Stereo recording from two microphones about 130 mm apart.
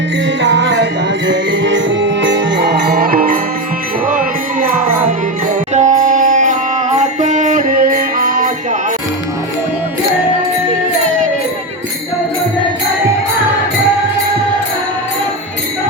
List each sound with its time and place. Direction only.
5.7 s music: 70° right (ahead or behind); by 8.4 s 90° right